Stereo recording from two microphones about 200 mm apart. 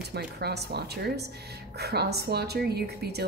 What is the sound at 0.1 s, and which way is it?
A woman's voice, 55° right (ahead or behind).